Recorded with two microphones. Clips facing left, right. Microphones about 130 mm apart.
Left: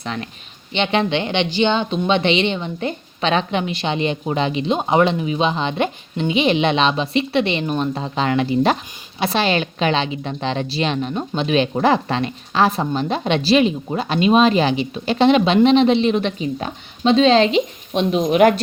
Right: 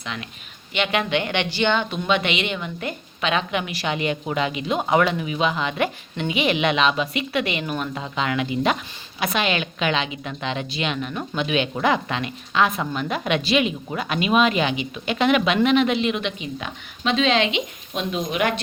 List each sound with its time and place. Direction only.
0.0 s a woman's voice: 35° left (ahead or behind)